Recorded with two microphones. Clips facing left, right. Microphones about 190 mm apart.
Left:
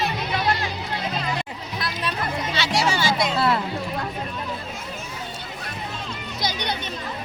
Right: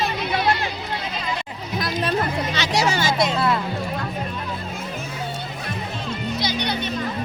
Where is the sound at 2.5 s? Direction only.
40° right (ahead or behind).